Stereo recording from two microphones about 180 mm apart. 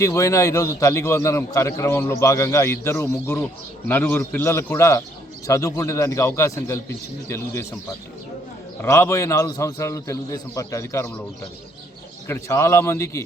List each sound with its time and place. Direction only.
0.0 s a man's voice: 15° left (ahead or behind)
12.3 s a man's voice: 15° left (ahead or behind)